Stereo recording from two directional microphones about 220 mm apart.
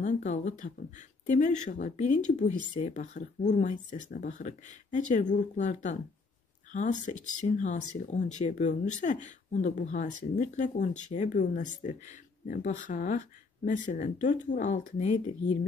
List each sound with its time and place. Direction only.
0.0 s speech: 35° left (ahead or behind)